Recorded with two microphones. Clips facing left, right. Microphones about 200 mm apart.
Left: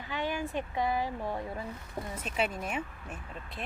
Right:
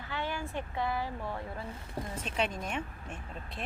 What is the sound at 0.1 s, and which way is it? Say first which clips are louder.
Speech: left 3 dB; 15° left (ahead or behind).